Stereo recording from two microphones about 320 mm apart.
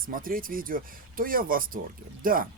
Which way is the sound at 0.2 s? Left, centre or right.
Right.